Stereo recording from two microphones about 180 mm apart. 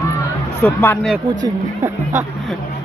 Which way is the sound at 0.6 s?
10° left (ahead or behind).